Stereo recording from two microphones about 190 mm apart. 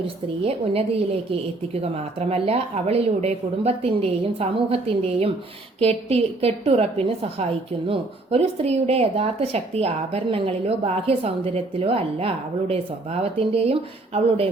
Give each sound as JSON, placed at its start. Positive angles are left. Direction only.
{"t": 0.4, "sound": "a woman's voice", "side_deg": -30}